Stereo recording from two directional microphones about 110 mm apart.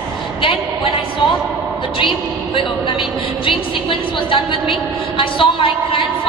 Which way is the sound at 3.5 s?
50° left (ahead or behind).